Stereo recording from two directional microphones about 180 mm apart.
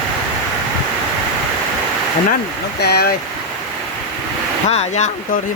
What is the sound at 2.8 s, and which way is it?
Speech, 65° left (ahead or behind).